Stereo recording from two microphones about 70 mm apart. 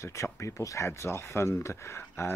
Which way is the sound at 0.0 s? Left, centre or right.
Left.